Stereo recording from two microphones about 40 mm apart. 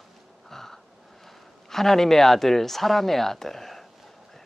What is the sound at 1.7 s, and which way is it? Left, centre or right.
Speech, centre.